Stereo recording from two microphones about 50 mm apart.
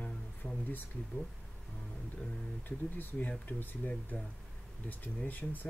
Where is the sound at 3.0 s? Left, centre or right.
Left.